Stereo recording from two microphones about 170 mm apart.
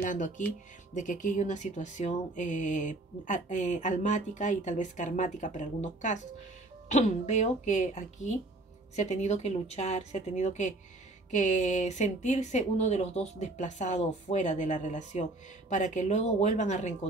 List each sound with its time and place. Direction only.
0.0 s speech: 50° left (ahead or behind)